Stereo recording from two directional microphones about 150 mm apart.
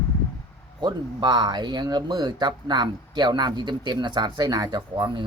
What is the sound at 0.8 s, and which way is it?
Speech, 30° right (ahead or behind).